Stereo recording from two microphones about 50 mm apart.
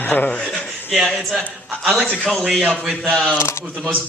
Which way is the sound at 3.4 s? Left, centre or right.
Left.